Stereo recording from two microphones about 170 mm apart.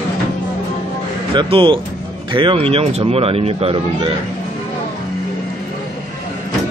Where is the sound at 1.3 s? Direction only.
30° right (ahead or behind).